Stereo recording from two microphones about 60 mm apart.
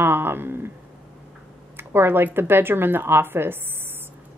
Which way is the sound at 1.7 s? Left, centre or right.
Right.